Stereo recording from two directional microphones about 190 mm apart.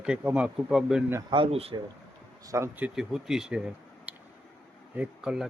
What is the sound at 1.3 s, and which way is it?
Speech, 30° right (ahead or behind).